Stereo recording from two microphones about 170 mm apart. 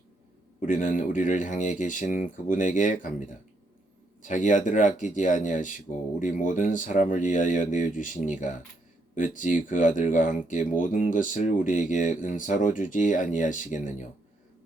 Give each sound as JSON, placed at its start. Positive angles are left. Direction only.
{"t": 0.6, "sound": "speech", "side_deg": 50}
{"t": 4.2, "sound": "speech", "side_deg": 50}